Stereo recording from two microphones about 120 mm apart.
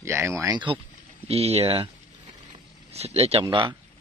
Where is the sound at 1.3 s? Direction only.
60° right (ahead or behind).